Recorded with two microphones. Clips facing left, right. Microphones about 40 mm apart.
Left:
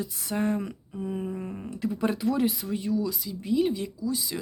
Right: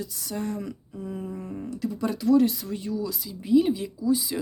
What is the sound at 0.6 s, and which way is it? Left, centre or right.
Speech, centre.